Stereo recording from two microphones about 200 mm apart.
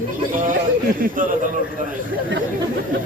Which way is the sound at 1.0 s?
45° right (ahead or behind).